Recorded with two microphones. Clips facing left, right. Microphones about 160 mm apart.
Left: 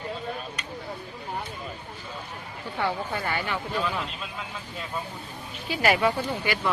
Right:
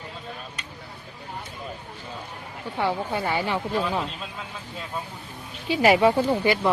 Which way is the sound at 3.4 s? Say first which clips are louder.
Right 3 dB; 35° right (ahead or behind).